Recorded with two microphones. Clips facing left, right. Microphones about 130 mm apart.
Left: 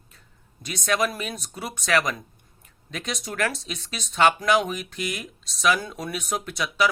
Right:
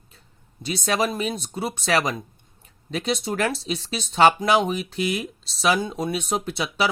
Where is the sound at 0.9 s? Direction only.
30° right (ahead or behind).